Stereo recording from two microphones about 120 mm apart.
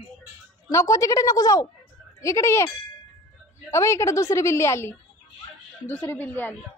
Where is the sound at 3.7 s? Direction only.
25° left (ahead or behind).